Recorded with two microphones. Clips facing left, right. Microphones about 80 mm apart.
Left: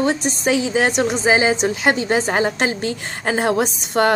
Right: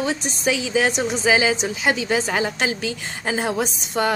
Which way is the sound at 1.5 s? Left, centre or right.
Left.